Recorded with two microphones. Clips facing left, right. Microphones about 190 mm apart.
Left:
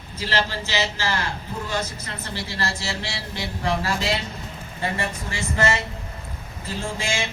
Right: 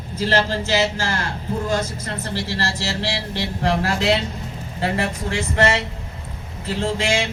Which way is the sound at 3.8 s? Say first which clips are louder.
Right 5 dB; 70° right (ahead or behind).